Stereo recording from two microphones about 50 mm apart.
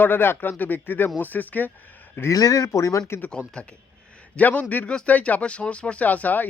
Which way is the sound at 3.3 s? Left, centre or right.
Left.